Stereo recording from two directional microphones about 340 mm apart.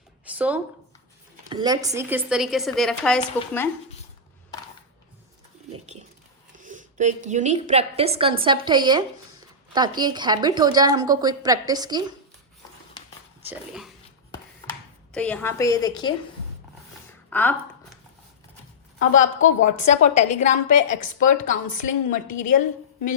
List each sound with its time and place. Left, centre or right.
0.3 s speech: centre
6.6 s a sound: right
7.3 s a woman's voice: right
13.5 s whispering: centre
15.1 s a woman's voice: centre
17.2 s a sound: centre
19.5 s a woman's voice: left